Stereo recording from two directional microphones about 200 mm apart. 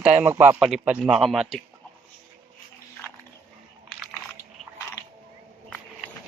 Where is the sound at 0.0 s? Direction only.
5° right (ahead or behind).